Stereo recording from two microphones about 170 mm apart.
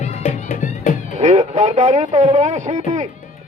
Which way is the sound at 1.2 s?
40° right (ahead or behind).